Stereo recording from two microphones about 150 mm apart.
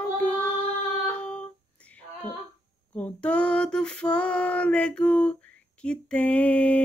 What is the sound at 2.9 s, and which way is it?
Female singing, 10° left (ahead or behind).